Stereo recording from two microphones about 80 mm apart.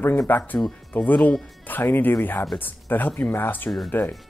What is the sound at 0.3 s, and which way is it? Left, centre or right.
Speech, left.